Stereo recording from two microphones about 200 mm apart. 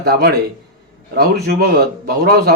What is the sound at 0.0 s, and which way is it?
Speech, 50° right (ahead or behind).